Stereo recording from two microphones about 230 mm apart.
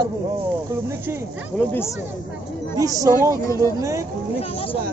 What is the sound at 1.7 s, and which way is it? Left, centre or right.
Speech, centre.